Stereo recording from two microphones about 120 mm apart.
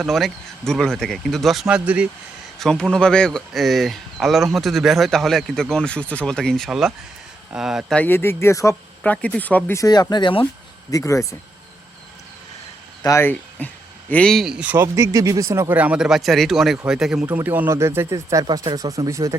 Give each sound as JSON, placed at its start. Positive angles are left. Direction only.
{"t": 0.0, "sound": "speech", "side_deg": 0}
{"t": 2.6, "sound": "speech", "side_deg": 5}
{"t": 7.9, "sound": "speech", "side_deg": 15}
{"t": 9.0, "sound": "speech", "side_deg": 10}
{"t": 9.7, "sound": "speech", "side_deg": 30}
{"t": 10.9, "sound": "speech", "side_deg": 25}
{"t": 13.0, "sound": "speech", "side_deg": 30}
{"t": 13.6, "sound": "speech", "side_deg": 10}
{"t": 14.9, "sound": "speech", "side_deg": -25}
{"t": 15.7, "sound": "speech", "side_deg": -10}
{"t": 17.2, "sound": "speech", "side_deg": -15}